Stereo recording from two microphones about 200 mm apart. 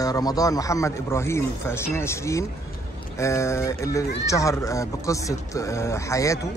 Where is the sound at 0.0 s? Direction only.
20° left (ahead or behind).